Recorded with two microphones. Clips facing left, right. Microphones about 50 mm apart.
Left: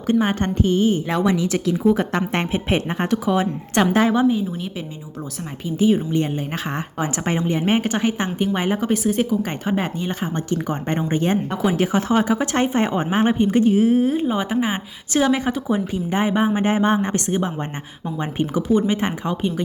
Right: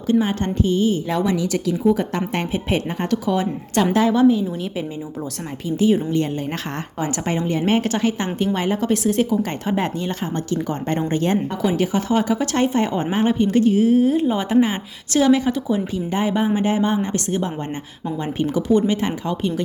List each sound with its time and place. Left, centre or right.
0.1 s a woman's voice: left
5.6 s a woman's voice: centre
7.0 s speech: left
7.6 s a woman's voice: centre
11.8 s a woman's voice: left